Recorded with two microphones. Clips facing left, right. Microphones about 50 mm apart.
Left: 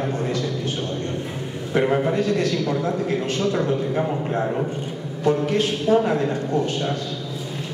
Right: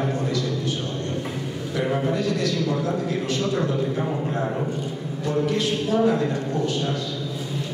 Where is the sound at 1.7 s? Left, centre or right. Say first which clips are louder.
Left 4 dB; left.